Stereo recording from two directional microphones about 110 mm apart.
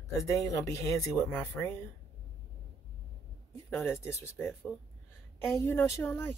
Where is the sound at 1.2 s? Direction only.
15° left (ahead or behind).